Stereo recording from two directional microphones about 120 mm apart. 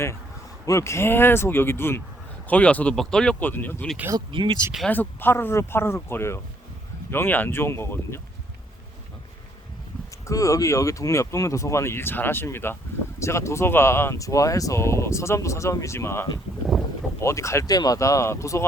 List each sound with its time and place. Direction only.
0.6 s speech: 25° left (ahead or behind)
4.3 s speech: 45° right (ahead or behind)
4.9 s speech: 15° left (ahead or behind)
10.2 s speech: 25° left (ahead or behind)